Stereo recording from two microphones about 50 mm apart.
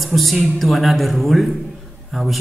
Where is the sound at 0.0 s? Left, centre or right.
Centre.